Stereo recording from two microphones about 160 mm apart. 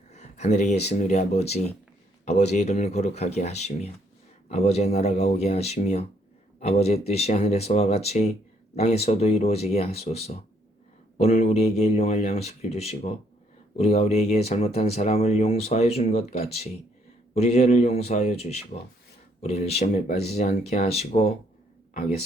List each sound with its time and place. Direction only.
0.1 s speech: 45° left (ahead or behind)